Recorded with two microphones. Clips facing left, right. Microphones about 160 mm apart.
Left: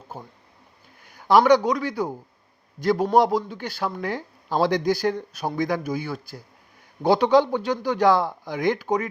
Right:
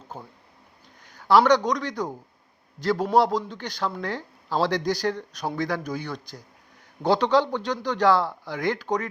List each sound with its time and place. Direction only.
0.1 s a man's voice: 10° left (ahead or behind)